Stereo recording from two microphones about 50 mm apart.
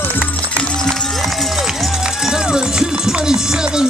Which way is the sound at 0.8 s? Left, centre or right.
Centre.